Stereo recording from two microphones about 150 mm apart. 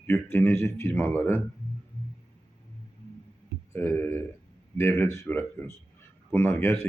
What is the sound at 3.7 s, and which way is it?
Speech, 15° left (ahead or behind).